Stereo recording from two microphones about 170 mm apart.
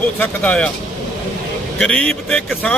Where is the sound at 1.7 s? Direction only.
5° left (ahead or behind).